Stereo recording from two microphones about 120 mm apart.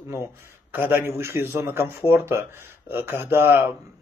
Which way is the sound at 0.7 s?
15° right (ahead or behind).